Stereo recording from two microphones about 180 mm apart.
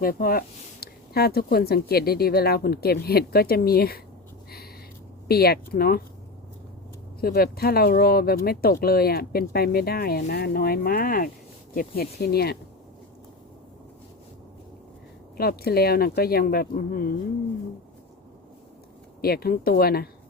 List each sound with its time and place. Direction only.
0.0 s speech: 55° left (ahead or behind)
5.3 s speech: 60° left (ahead or behind)
7.2 s speech: 60° left (ahead or behind)
15.4 s speech: 60° left (ahead or behind)
19.2 s speech: 60° left (ahead or behind)